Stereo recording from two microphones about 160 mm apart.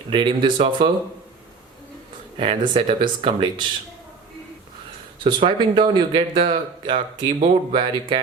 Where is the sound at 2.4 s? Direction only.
30° right (ahead or behind).